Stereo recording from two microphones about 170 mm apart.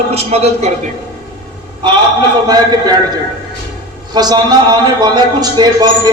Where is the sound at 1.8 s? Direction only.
25° right (ahead or behind).